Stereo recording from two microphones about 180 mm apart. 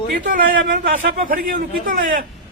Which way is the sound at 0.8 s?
50° right (ahead or behind).